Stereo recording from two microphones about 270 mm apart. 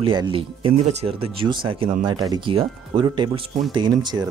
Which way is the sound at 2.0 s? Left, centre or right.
Centre.